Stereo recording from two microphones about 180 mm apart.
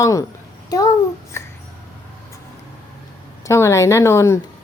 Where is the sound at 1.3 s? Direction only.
15° left (ahead or behind).